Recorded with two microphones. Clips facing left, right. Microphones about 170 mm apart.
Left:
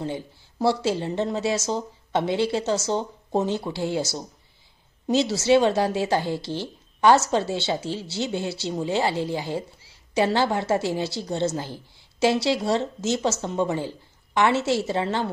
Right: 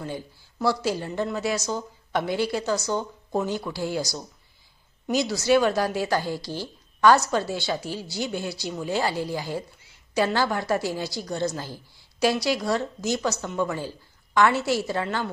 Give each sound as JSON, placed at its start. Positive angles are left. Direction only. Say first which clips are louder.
{"t": 0.0, "sound": "speech", "louder": "left 3 dB", "side_deg": 25}